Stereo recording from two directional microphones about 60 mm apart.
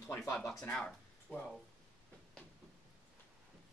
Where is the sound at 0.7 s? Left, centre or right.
Centre.